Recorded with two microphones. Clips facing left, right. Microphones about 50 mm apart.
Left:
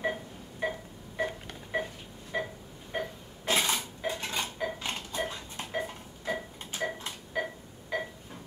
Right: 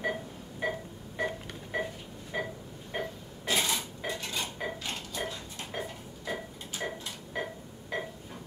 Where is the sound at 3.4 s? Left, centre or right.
Left.